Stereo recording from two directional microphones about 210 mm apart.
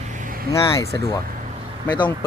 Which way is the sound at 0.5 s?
15° left (ahead or behind).